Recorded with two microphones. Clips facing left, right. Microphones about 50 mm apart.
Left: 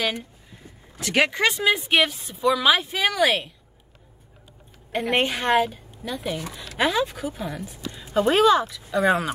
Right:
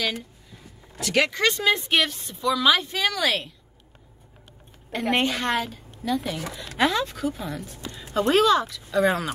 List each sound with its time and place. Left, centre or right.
0.0 s a sound: left
1.1 s speech: centre
5.1 s speech: centre